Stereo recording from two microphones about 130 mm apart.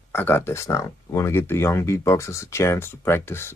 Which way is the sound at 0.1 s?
15° left (ahead or behind).